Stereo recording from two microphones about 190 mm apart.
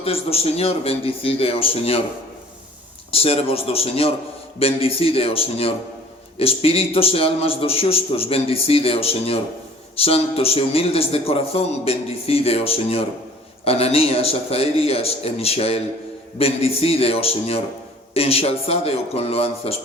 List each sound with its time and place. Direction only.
0.0 s a man's voice: 30° left (ahead or behind)
3.1 s a man's voice: 30° left (ahead or behind)